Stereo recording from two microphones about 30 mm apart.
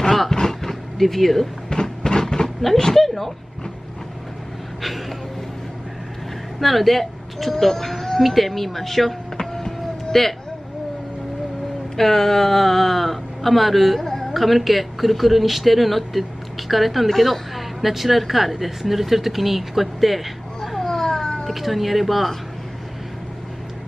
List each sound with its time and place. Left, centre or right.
0.1 s a sound: centre
0.4 s vehicle: centre
0.9 s speech: centre
1.7 s a sound: left
2.8 s speech: centre
6.6 s speech: centre
9.7 s a sound: centre
12.0 s speech: centre
14.0 s a sound: centre
14.4 s speech: centre
20.8 s children playing: centre
21.5 s speech: centre